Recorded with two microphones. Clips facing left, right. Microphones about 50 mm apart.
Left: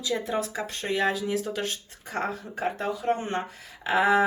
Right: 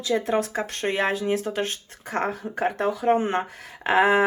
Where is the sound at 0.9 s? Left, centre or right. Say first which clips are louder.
Right 1 dB; right.